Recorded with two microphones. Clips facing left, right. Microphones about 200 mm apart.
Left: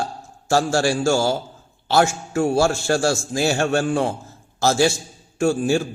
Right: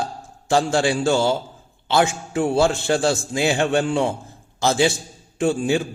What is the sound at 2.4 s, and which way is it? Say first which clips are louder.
A man's voice: even; 20° right (ahead or behind).